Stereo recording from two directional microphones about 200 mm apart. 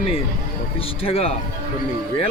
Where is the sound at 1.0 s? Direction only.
30° left (ahead or behind).